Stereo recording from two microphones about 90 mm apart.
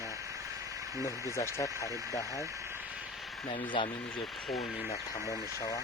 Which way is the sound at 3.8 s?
70° left (ahead or behind).